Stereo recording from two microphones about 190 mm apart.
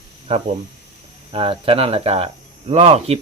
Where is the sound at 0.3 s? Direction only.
30° right (ahead or behind).